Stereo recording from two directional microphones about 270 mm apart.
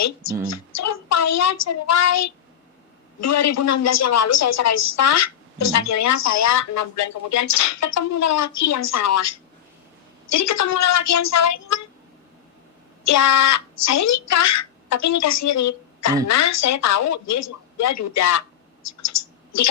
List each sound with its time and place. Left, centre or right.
0.5 s a woman's voice: left
13.1 s a woman's voice: left
18.9 s a sound: left